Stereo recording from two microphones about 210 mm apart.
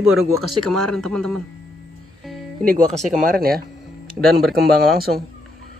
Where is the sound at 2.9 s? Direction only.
Centre (ahead or behind).